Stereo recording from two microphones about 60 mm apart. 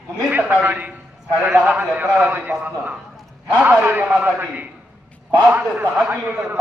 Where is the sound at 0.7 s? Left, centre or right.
Right.